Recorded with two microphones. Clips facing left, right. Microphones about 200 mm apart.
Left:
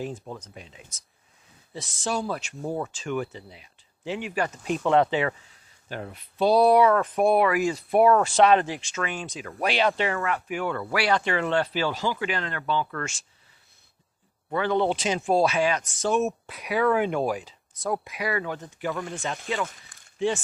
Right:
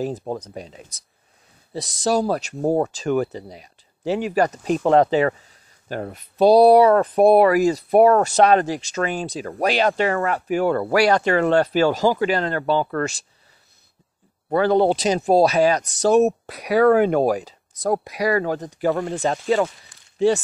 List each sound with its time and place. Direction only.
0.0 s speech: 40° right (ahead or behind)
14.5 s speech: 35° right (ahead or behind)
19.9 s a sound: 50° left (ahead or behind)